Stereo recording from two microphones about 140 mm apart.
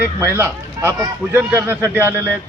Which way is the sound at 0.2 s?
15° right (ahead or behind).